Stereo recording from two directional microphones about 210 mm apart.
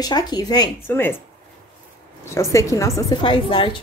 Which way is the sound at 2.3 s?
15° left (ahead or behind).